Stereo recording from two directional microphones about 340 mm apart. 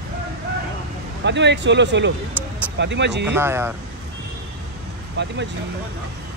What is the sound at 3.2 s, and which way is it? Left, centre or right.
Speech, centre.